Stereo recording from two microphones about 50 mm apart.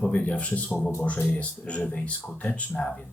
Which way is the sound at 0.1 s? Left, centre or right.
Left.